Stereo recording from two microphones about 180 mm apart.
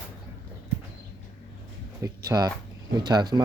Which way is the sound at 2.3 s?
20° right (ahead or behind).